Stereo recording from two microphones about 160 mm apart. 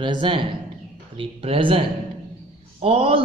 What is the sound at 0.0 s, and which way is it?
Speech, 30° right (ahead or behind).